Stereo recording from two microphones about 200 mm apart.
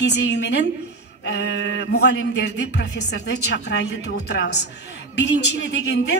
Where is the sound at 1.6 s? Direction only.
60° left (ahead or behind).